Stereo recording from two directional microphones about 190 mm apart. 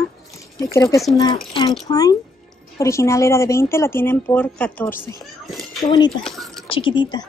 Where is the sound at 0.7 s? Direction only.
15° left (ahead or behind).